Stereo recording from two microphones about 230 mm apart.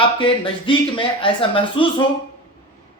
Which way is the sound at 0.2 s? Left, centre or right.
Left.